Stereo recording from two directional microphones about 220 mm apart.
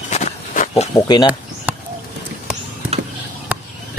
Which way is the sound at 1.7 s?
5° right (ahead or behind).